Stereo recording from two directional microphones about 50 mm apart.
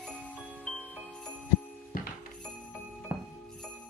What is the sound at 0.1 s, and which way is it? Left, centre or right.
Jingle bell, centre.